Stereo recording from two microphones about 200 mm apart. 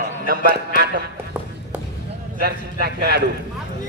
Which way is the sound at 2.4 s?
50° right (ahead or behind).